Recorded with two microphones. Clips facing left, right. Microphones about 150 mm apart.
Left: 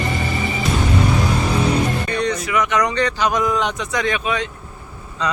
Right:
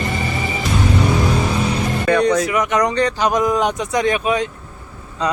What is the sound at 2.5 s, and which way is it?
A man's voice, 40° right (ahead or behind).